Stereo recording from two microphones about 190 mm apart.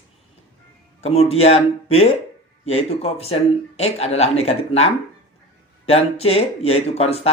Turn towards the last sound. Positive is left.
turn(degrees=30)  # may be behind; listen again after turning